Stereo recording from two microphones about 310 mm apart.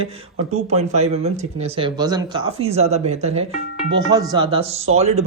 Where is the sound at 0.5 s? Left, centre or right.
Right.